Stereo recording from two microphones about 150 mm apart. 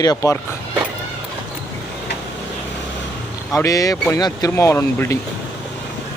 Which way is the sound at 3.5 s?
20° left (ahead or behind).